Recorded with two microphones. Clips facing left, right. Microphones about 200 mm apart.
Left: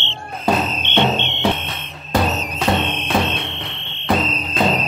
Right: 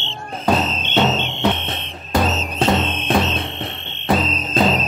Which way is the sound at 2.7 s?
Centre (ahead or behind).